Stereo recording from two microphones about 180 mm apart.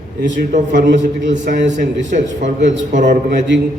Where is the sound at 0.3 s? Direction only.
45° right (ahead or behind).